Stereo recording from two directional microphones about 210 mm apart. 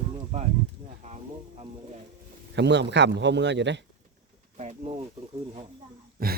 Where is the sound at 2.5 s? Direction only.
55° right (ahead or behind).